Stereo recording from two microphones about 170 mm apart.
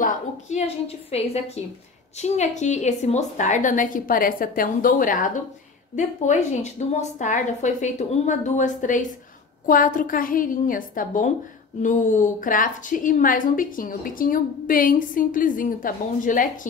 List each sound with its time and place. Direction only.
0.0 s a woman's voice: 40° left (ahead or behind)